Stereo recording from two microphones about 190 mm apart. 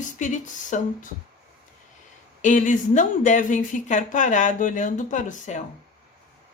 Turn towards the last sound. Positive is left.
turn(degrees=40)  # may be behind; listen again after turning